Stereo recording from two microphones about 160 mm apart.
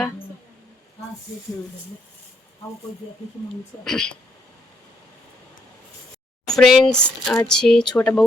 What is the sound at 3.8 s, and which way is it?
Speech, 5° left (ahead or behind).